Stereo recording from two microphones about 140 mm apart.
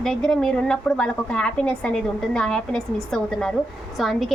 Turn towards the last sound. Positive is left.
turn(degrees=0)  # may be behind; listen again after turning